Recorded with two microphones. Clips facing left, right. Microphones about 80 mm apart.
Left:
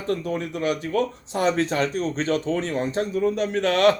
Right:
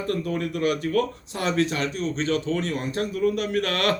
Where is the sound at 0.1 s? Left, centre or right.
Left.